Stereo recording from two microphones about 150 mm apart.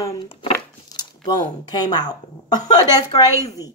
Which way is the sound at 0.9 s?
25° left (ahead or behind).